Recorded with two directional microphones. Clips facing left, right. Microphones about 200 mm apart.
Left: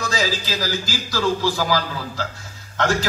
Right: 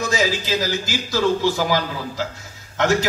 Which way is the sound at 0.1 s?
20° right (ahead or behind).